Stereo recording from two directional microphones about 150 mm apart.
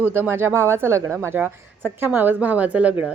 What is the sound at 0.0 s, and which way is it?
Speech, 15° right (ahead or behind).